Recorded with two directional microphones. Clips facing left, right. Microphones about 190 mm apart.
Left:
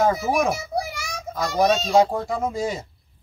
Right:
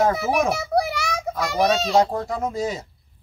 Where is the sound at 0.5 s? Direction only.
65° right (ahead or behind).